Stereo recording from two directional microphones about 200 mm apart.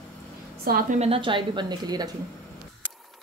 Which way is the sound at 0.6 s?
50° right (ahead or behind).